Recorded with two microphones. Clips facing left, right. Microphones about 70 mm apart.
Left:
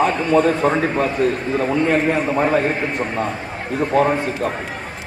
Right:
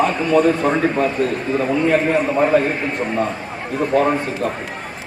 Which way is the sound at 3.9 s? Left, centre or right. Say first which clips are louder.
Even; centre.